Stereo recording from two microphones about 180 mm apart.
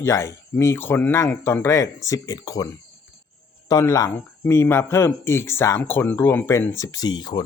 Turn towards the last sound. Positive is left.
turn(degrees=25)  # may be behind; listen again after turning